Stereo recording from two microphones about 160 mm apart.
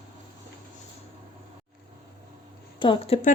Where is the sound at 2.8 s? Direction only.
30° left (ahead or behind).